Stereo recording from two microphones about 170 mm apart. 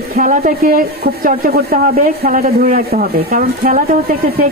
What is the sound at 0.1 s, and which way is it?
Speech, 50° right (ahead or behind).